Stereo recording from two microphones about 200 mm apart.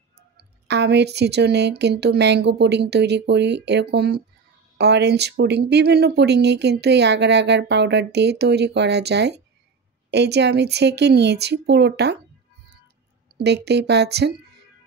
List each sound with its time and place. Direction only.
0.4 s speech: 60° right (ahead or behind)
13.4 s speech: 55° right (ahead or behind)